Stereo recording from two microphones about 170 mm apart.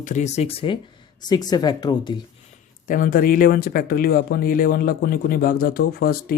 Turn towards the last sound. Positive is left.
turn(degrees=60)  # may be behind; listen again after turning